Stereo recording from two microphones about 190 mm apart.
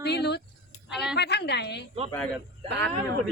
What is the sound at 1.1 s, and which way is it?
Speech, 60° left (ahead or behind).